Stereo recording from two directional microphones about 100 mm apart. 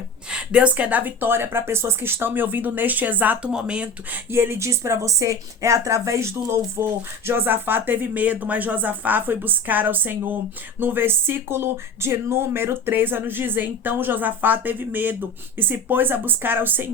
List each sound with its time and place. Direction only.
0.3 s speech: 10° right (ahead or behind)
4.3 s speech: 25° right (ahead or behind)